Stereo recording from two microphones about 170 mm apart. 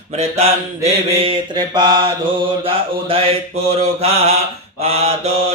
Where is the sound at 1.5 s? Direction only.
25° right (ahead or behind).